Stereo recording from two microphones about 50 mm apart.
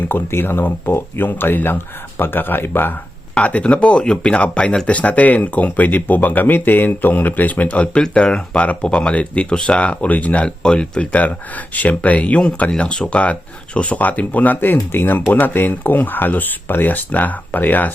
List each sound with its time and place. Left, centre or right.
0.3 s speech: left
3.3 s speech: left